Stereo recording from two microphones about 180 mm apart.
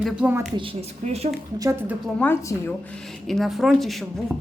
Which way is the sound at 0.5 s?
30° right (ahead or behind).